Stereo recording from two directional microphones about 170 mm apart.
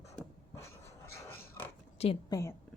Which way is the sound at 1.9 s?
40° left (ahead or behind).